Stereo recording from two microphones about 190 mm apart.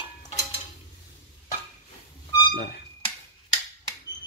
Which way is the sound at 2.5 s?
60° left (ahead or behind).